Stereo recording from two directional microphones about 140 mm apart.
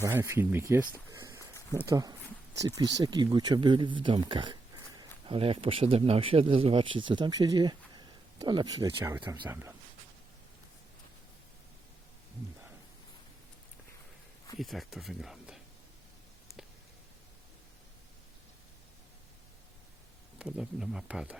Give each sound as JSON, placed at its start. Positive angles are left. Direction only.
{"t": 0.0, "sound": "speech", "side_deg": -20}
{"t": 0.9, "sound": "a sound", "side_deg": -20}
{"t": 1.9, "sound": "speech", "side_deg": -25}
{"t": 14.6, "sound": "speech", "side_deg": 0}
{"t": 20.4, "sound": "speech", "side_deg": -5}